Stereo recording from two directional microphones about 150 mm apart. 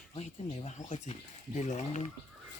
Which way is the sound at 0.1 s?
40° left (ahead or behind).